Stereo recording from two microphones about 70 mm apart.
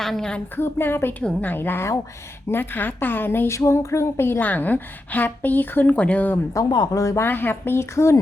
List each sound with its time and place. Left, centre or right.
0.0 s speech: centre
0.5 s a woman's voice: left
3.5 s a woman's voice: left
6.5 s speech: left
7.3 s a woman's voice: left